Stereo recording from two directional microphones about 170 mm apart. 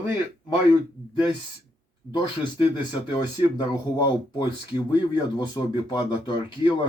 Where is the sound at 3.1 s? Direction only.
25° left (ahead or behind).